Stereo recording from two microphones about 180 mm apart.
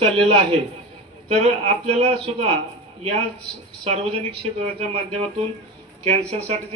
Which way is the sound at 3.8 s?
30° right (ahead or behind).